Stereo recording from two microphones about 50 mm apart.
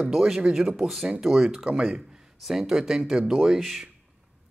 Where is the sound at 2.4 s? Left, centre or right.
Centre.